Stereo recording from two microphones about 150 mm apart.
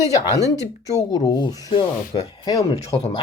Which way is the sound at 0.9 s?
30° left (ahead or behind).